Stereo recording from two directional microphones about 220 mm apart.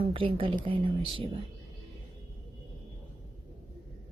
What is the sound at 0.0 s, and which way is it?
Speech, 25° right (ahead or behind).